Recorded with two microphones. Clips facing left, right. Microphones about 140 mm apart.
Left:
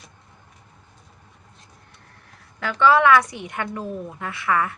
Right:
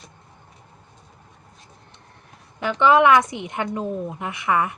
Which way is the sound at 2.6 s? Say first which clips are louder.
Right 1 dB; 20° right (ahead or behind).